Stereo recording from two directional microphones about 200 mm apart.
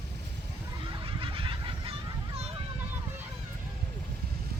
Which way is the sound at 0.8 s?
25° right (ahead or behind).